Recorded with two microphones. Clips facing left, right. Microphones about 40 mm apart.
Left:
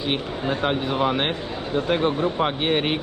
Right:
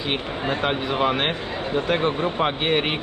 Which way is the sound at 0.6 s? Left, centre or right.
Right.